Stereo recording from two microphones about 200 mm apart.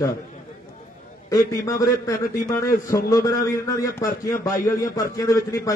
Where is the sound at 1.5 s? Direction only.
15° left (ahead or behind).